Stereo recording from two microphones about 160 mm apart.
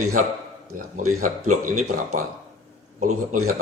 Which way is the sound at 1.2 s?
55° right (ahead or behind).